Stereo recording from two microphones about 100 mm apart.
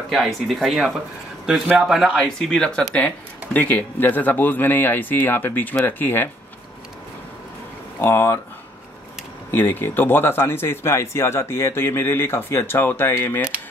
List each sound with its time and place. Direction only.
0.1 s speech: centre (ahead or behind); by 6.2 s 20° left (ahead or behind)
8.0 s speech: 25° left (ahead or behind)
9.5 s speech: 20° left (ahead or behind)